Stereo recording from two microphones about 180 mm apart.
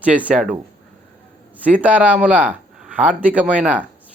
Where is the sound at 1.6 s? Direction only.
10° right (ahead or behind).